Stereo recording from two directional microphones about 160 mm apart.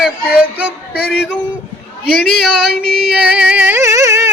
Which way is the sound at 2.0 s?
90° left.